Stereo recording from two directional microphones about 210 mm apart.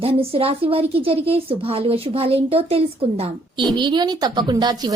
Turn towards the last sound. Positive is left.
turn(degrees=-20)  # may be behind; listen again after turning